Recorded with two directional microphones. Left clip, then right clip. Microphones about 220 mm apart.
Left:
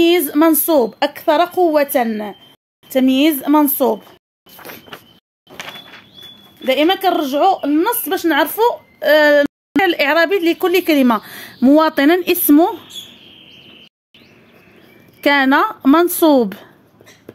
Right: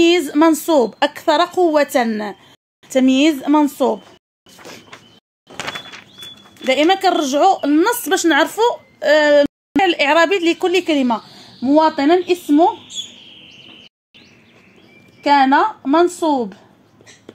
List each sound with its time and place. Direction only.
0.0 s a woman's voice: 5° left (ahead or behind)
6.6 s a woman's voice: 5° left (ahead or behind)
11.0 s speech: 35° left (ahead or behind)
11.6 s a woman's voice: 50° left (ahead or behind)
15.2 s a woman's voice: 50° left (ahead or behind)